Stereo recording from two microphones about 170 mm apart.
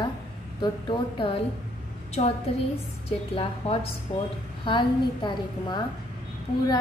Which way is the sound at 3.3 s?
35° left (ahead or behind).